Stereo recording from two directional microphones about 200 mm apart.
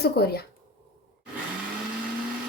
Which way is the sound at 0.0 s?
55° left (ahead or behind).